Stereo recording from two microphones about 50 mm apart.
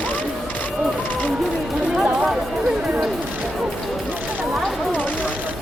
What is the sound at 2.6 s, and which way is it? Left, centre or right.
Chatter, centre.